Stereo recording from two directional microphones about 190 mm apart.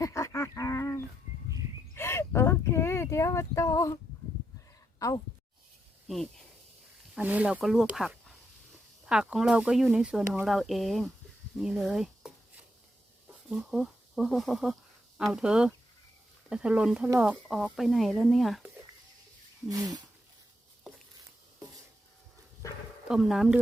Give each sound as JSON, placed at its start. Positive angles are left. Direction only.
{"t": 0.0, "sound": "livestock", "side_deg": 15}
{"t": 2.0, "sound": "a sound", "side_deg": 15}
{"t": 4.9, "sound": "a woman's voice", "side_deg": 15}
{"t": 6.1, "sound": "speech", "side_deg": 0}
{"t": 13.5, "sound": "speech", "side_deg": 0}
{"t": 19.6, "sound": "a sound", "side_deg": -20}
{"t": 20.9, "sound": "patter", "side_deg": 0}
{"t": 21.2, "sound": "a sound", "side_deg": -20}
{"t": 23.0, "sound": "speech", "side_deg": 0}